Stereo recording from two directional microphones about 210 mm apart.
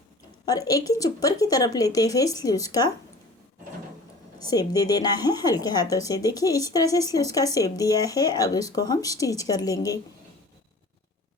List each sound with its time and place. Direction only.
0.4 s a woman's voice: 15° left (ahead or behind)
4.4 s a woman's voice: 20° left (ahead or behind)